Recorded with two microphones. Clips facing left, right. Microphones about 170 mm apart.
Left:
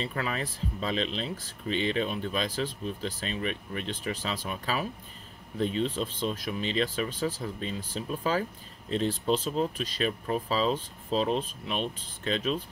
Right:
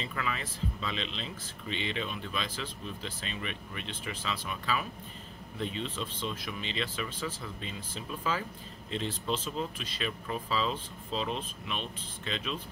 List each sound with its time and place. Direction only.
0.0 s speech: 40° left (ahead or behind)